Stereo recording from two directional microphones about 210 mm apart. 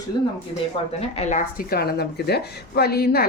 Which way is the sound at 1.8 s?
50° left (ahead or behind).